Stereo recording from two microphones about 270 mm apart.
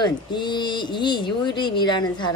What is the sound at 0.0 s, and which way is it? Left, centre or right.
Speech, centre.